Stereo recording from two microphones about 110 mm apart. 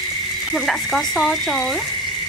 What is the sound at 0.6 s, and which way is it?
Speech, centre (ahead or behind).